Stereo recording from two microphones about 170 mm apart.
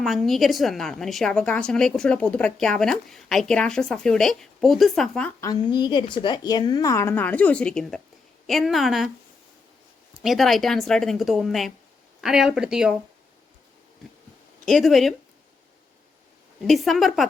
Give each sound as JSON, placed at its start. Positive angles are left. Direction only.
{"t": 0.0, "sound": "a woman's voice", "side_deg": 0}
{"t": 5.4, "sound": "a woman's voice", "side_deg": 25}
{"t": 10.2, "sound": "a woman's voice", "side_deg": 0}
{"t": 14.6, "sound": "a woman's voice", "side_deg": 0}
{"t": 16.6, "sound": "a woman's voice", "side_deg": 0}